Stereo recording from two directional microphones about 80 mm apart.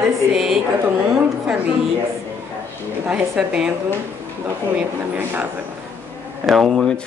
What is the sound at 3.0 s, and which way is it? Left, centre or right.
Speech, centre.